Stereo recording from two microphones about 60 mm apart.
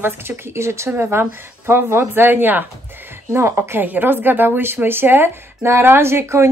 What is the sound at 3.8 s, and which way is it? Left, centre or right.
Speech, right.